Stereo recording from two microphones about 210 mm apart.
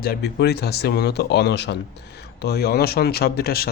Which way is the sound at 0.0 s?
50° left (ahead or behind).